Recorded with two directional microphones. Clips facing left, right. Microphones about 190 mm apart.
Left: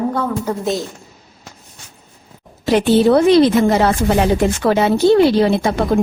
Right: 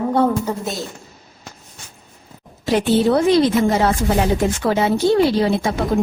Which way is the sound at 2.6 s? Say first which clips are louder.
Left 4 dB; 70° left (ahead or behind).